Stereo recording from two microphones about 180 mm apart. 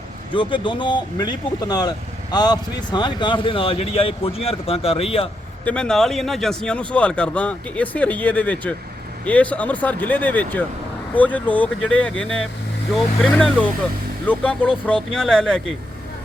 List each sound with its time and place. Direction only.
0.3 s speech: 25° left (ahead or behind)
5.6 s speech: 5° left (ahead or behind)